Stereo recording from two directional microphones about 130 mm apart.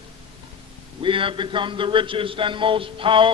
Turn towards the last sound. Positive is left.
turn(degrees=-40)  # may be behind; listen again after turning